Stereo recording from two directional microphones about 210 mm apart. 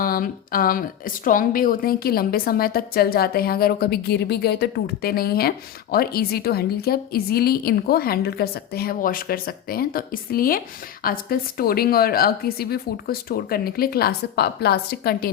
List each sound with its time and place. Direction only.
0.0 s a woman's voice: 45° left (ahead or behind)